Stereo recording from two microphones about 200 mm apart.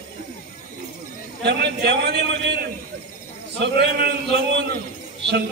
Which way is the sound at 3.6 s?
55° right (ahead or behind).